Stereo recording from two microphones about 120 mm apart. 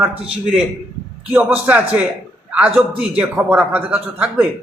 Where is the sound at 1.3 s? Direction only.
15° right (ahead or behind).